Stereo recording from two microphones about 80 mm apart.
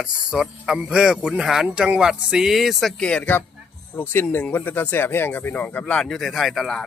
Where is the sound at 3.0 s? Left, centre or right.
Centre.